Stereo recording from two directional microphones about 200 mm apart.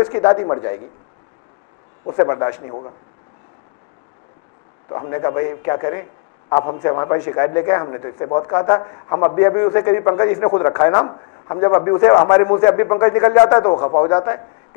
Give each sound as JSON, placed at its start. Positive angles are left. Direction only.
{"t": 0.0, "sound": "a man's voice", "side_deg": 25}
{"t": 2.0, "sound": "a man's voice", "side_deg": 30}
{"t": 4.8, "sound": "a man's voice", "side_deg": 30}